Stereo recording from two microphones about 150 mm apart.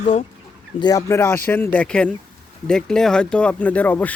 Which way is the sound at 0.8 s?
25° left (ahead or behind).